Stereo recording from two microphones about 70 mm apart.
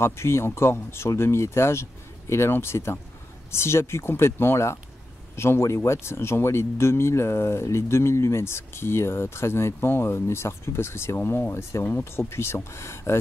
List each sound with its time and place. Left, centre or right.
0.0 s speech: left